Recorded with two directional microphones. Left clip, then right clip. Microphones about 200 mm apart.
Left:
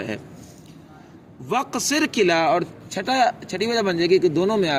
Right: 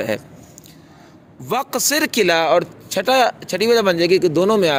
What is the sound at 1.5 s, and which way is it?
A man's voice, 55° right (ahead or behind).